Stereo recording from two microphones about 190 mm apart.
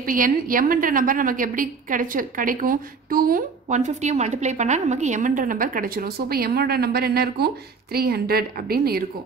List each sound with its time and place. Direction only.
0.0 s a woman's voice: 45° right (ahead or behind)